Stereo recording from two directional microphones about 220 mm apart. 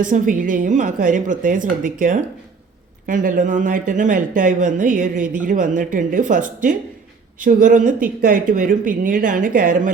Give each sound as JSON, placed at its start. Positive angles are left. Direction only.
{"t": 0.0, "sound": "speech", "side_deg": -35}